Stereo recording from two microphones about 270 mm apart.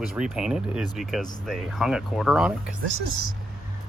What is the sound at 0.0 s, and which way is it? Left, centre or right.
Speech, centre.